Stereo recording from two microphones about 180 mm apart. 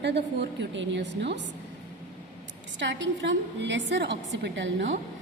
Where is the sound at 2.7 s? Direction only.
85° right.